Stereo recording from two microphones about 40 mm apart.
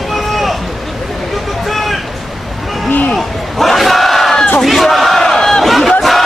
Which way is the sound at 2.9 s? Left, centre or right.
Left.